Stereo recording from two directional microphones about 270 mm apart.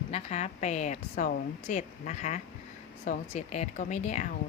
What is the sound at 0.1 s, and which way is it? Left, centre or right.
A woman's voice, left.